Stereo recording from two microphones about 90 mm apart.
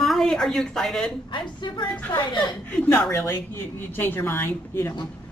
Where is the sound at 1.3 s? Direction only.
55° left (ahead or behind).